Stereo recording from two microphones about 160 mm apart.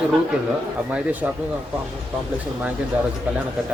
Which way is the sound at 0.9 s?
10° right (ahead or behind).